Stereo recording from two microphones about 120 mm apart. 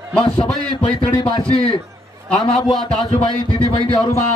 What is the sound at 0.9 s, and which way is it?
Speech, 10° left (ahead or behind).